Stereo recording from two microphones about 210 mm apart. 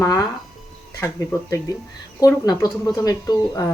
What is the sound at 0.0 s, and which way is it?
Speech, 15° left (ahead or behind).